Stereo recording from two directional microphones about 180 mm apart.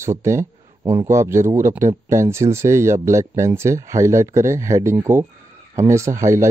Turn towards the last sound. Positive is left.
turn(degrees=-15)  # may be behind; listen again after turning